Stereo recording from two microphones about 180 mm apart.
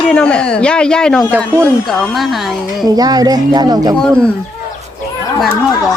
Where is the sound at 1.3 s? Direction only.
10° right (ahead or behind).